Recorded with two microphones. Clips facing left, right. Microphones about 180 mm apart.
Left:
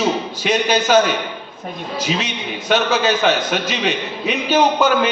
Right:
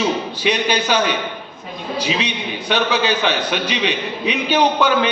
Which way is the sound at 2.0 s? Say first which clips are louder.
Right 1 dB; 45° left (ahead or behind).